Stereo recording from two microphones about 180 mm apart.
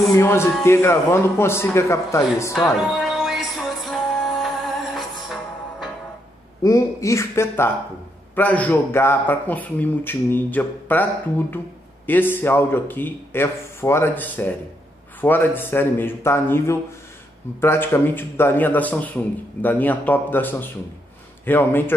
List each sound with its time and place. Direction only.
0.1 s a man's voice: 15° left (ahead or behind)
2.9 s music: centre (ahead or behind)
6.6 s a man's voice: 20° left (ahead or behind)